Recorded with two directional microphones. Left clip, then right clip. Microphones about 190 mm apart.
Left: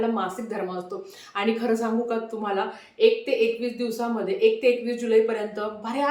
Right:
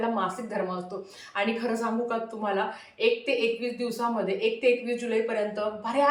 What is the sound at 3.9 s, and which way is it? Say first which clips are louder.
Speech: right 1 dB; 15° left (ahead or behind).